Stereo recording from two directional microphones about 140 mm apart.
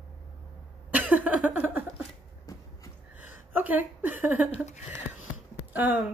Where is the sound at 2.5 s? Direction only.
25° left (ahead or behind).